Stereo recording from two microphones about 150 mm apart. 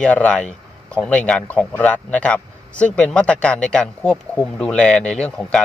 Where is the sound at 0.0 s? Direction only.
10° left (ahead or behind).